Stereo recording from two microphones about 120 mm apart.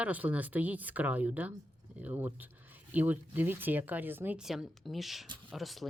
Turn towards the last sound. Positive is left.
turn(degrees=0)  # may be behind; listen again after turning